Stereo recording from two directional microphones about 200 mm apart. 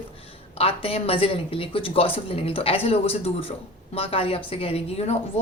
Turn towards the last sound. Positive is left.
turn(degrees=30)  # may be behind; listen again after turning